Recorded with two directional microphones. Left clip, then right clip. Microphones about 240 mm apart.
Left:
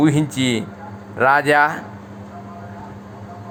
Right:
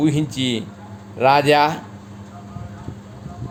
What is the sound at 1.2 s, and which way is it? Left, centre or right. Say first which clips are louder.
Speech: even; centre.